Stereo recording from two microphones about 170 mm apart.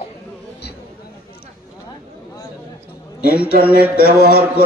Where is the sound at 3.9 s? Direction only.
70° left (ahead or behind).